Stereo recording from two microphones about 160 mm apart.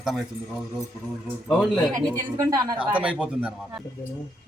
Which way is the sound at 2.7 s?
10° right (ahead or behind).